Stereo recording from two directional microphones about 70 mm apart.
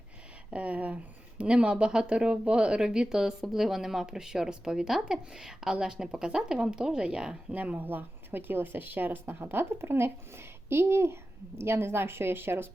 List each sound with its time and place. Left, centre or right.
0.5 s speech: centre